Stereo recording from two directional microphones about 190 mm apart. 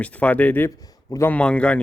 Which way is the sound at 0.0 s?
5° left (ahead or behind).